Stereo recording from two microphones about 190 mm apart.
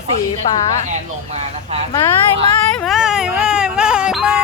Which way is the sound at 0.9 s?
35° right (ahead or behind).